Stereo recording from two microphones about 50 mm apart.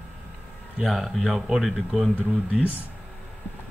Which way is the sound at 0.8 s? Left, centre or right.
Centre.